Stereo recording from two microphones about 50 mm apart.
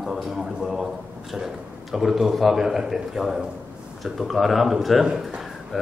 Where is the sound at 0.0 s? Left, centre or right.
Centre.